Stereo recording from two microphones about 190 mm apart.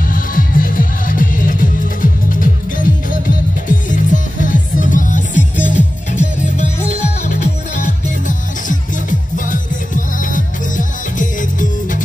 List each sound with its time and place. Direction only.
0.1 s music: 45° left (ahead or behind)
9.5 s music: 45° left (ahead or behind)